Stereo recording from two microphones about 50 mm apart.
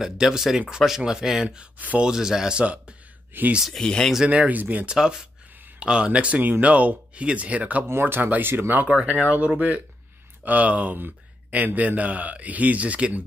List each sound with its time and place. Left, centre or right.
0.0 s speech: centre
3.3 s speech: right
3.7 s speech: centre
4.3 s a man's voice: right
4.8 s speech: centre
5.8 s speech: right
7.9 s speech: right
9.0 s a man's voice: right